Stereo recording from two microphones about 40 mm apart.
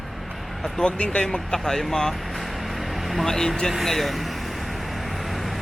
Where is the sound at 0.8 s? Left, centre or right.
Left.